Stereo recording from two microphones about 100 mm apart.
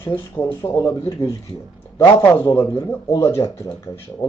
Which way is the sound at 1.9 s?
30° left (ahead or behind).